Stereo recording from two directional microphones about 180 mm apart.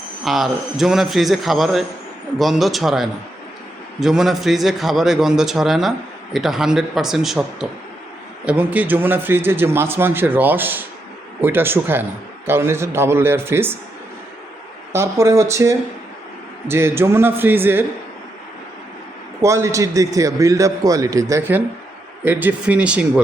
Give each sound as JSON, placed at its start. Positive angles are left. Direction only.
{"t": 0.3, "sound": "a man's voice", "side_deg": 0}
{"t": 14.9, "sound": "a man's voice", "side_deg": -15}
{"t": 19.4, "sound": "a man's voice", "side_deg": -15}